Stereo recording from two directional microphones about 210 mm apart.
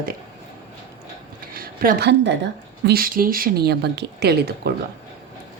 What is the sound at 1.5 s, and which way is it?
Speech, 45° right (ahead or behind).